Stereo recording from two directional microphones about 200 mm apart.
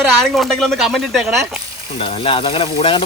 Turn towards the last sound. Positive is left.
turn(degrees=30)  # may be behind; listen again after turning